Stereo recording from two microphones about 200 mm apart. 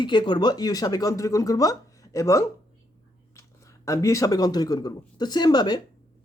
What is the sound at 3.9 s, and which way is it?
Speech, 15° left (ahead or behind).